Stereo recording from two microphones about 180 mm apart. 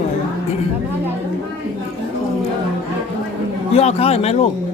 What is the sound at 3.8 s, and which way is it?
Speech, 35° left (ahead or behind).